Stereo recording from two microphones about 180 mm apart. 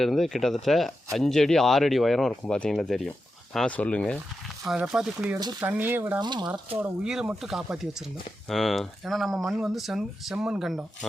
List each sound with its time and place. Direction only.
0.0 s speech: centre (ahead or behind)
5.4 s speech: 20° right (ahead or behind)
5.6 s speech: 10° right (ahead or behind)
6.1 s speech: 25° right (ahead or behind)
6.7 s speech: 5° right (ahead or behind)